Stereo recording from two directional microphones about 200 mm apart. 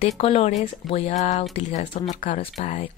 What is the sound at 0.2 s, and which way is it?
Speech, 30° left (ahead or behind).